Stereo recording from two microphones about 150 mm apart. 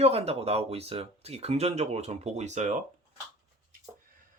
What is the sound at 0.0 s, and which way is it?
Speech, 45° right (ahead or behind).